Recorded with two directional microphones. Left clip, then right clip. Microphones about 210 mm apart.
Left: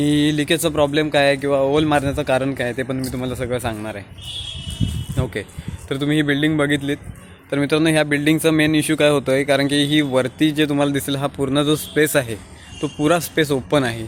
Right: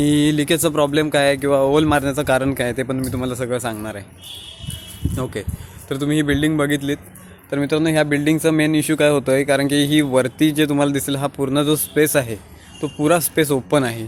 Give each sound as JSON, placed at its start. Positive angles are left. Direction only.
{"t": 0.0, "sound": "speech", "side_deg": -15}
{"t": 5.1, "sound": "speech", "side_deg": -5}